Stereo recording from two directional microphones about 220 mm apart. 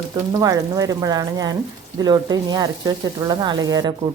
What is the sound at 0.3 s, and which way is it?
Speech, 15° right (ahead or behind).